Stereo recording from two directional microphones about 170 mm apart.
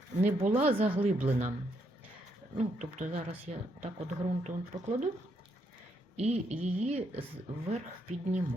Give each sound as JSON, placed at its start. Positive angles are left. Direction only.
{"t": 0.2, "sound": "speech", "side_deg": -40}
{"t": 2.6, "sound": "speech", "side_deg": -40}
{"t": 6.1, "sound": "speech", "side_deg": -40}